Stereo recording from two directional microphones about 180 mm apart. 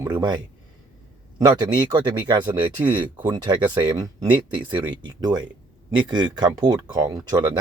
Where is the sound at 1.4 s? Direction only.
25° right (ahead or behind).